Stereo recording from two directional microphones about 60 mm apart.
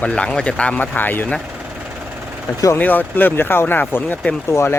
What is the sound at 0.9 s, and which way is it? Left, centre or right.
Speech, left.